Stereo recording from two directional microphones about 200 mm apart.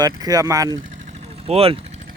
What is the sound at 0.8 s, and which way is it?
Vehicle, 35° right (ahead or behind).